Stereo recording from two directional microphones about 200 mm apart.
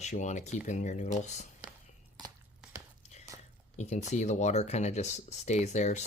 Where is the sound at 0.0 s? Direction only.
35° left (ahead or behind).